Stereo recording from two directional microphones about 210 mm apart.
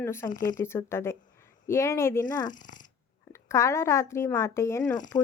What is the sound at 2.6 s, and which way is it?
Speech, 40° left (ahead or behind).